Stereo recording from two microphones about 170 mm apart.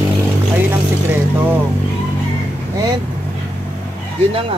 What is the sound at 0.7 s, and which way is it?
Speech, 10° right (ahead or behind).